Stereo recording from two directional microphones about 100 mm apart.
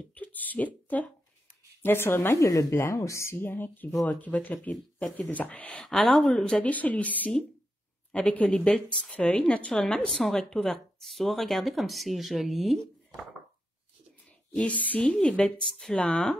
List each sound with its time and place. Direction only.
0.1 s a sound: 15° left (ahead or behind)
0.9 s speech: 15° left (ahead or behind); by 13.2 s centre (ahead or behind)
14.5 s speech: 15° left (ahead or behind)